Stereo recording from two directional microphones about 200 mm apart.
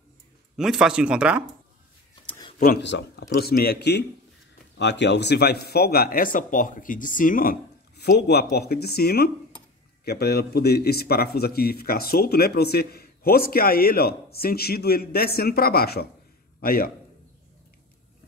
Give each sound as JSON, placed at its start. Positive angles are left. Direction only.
{"t": 0.6, "sound": "speech", "side_deg": -5}
{"t": 2.6, "sound": "a man's voice", "side_deg": 55}